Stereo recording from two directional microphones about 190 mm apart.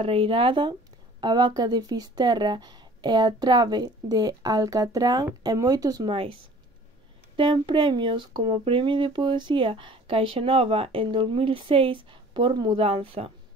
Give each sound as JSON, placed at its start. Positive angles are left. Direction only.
{"t": 0.0, "sound": "speech", "side_deg": -30}